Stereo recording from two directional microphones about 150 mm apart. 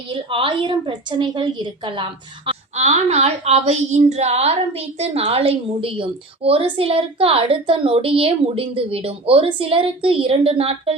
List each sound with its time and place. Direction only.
0.1 s speech: 35° right (ahead or behind)
2.5 s speech: 45° right (ahead or behind)